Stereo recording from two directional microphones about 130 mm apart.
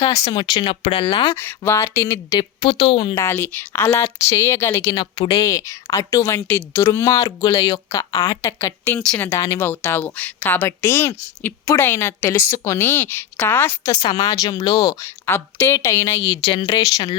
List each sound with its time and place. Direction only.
0.3 s speech: 35° left (ahead or behind)
1.4 s a woman's voice: 15° left (ahead or behind)
2.3 s speech: 40° left (ahead or behind)
3.2 s a woman's voice: 20° left (ahead or behind)
4.9 s a woman's voice: 35° left (ahead or behind); by 9.0 s 20° left (ahead or behind)
9.0 s speech: 10° left (ahead or behind)
13.9 s a woman's voice: 30° left (ahead or behind)
16.4 s speech: 40° left (ahead or behind)